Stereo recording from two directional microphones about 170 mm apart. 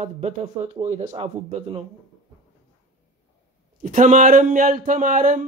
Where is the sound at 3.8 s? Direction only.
50° right (ahead or behind).